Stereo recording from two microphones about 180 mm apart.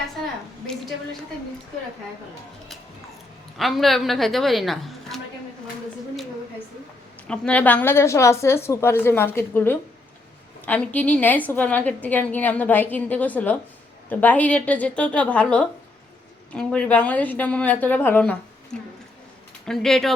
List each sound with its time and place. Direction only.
3.6 s a woman's voice: centre (ahead or behind)
7.3 s a woman's voice: 5° left (ahead or behind)